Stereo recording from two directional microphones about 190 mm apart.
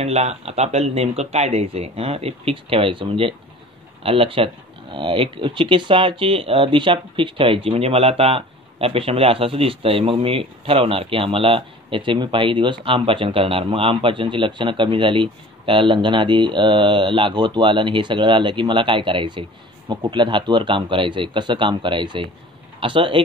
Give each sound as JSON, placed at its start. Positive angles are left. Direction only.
{"t": 0.0, "sound": "speech", "side_deg": -35}